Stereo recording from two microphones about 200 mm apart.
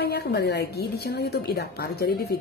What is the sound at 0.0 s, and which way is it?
A woman's voice, 55° left (ahead or behind).